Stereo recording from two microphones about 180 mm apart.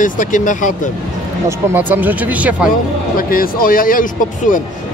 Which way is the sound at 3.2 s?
50° left (ahead or behind).